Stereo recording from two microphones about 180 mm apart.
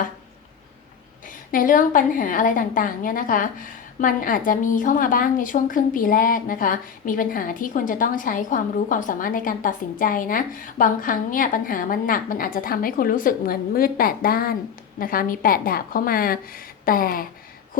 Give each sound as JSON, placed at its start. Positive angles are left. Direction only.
{"t": 1.5, "sound": "a woman's voice", "side_deg": 50}